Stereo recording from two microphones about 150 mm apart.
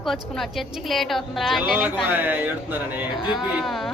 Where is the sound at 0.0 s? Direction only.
Centre (ahead or behind).